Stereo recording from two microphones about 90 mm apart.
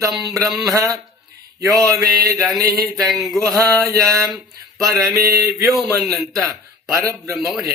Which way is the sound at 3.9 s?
40° right (ahead or behind).